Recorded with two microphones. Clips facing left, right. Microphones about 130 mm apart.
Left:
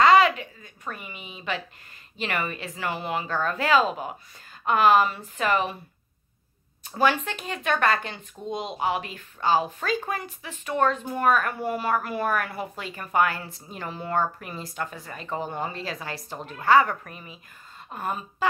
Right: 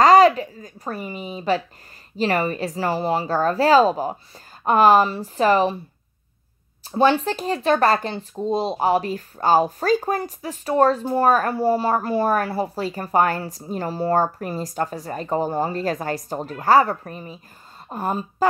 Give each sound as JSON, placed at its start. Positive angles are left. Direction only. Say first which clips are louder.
{"t": 0.0, "sound": "a woman's voice", "louder": "right 5 dB", "side_deg": -40}
{"t": 6.8, "sound": "a woman's voice", "louder": "right 6 dB", "side_deg": -30}